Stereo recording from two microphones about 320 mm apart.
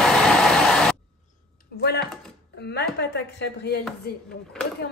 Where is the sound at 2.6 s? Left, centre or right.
Left.